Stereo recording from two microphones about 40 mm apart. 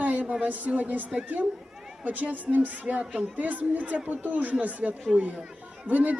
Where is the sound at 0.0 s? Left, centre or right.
Right.